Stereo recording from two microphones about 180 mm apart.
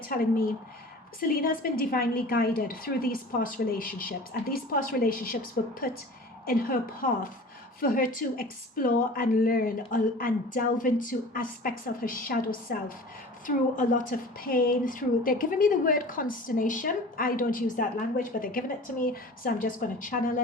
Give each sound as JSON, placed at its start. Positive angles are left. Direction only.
{"t": 0.1, "sound": "a woman's voice", "side_deg": 55}
{"t": 6.4, "sound": "a woman's voice", "side_deg": 55}